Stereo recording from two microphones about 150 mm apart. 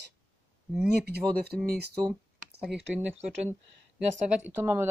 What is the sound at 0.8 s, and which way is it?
Speech, 90° right.